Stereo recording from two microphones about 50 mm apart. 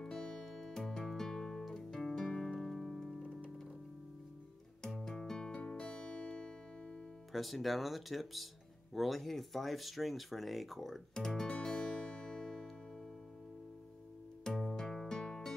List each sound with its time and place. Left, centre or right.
0.0 s music: centre
3.2 s music: right
4.8 s music: centre
7.3 s speech: centre
11.6 s music: centre
14.6 s music: centre